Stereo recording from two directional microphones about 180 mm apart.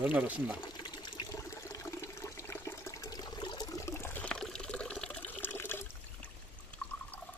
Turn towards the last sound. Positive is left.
turn(degrees=10)  # may be behind; listen again after turning